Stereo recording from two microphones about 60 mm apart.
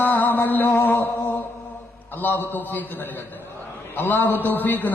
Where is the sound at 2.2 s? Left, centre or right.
Left.